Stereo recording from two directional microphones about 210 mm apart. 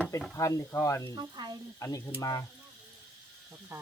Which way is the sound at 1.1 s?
20° right (ahead or behind).